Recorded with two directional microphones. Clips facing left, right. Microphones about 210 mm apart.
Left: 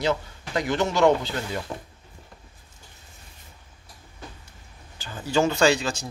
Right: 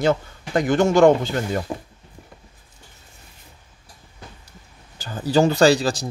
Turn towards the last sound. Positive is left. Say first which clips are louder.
# right 5 dB
turn(degrees=-35)  # may be behind; listen again after turning